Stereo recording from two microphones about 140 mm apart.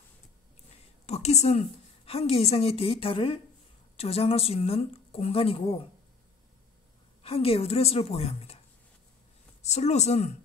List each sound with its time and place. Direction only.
1.0 s a woman's voice: 50° left (ahead or behind)
7.2 s a woman's voice: 45° left (ahead or behind)
9.6 s a woman's voice: 50° left (ahead or behind)